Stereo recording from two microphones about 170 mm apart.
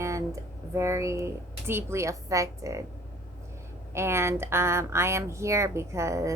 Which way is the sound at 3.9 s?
15° right (ahead or behind).